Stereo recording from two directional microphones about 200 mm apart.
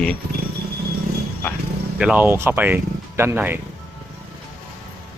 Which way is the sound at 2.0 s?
5° right (ahead or behind).